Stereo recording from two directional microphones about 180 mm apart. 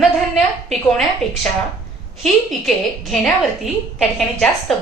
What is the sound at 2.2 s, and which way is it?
A woman's voice, centre (ahead or behind).